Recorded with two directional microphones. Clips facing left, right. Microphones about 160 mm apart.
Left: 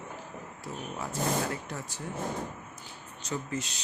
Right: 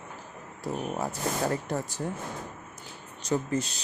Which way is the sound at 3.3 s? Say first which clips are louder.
Right 7 dB; 35° right (ahead or behind).